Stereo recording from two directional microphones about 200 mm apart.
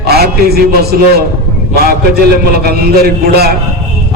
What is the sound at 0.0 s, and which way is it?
A man's voice, 50° right (ahead or behind).